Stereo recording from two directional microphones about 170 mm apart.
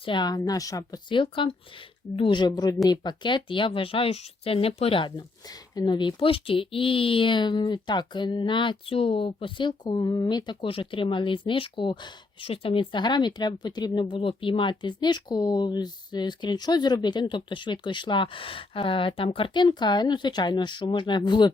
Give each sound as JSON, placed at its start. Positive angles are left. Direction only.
{"t": 0.0, "sound": "speech", "side_deg": 25}